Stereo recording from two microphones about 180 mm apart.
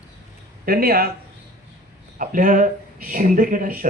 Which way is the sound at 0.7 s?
55° right (ahead or behind).